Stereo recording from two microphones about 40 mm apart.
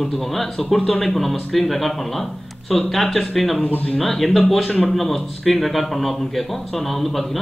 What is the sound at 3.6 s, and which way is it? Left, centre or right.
Speech, left.